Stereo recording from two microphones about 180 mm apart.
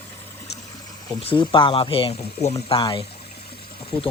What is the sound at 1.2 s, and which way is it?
Speech, 30° left (ahead or behind).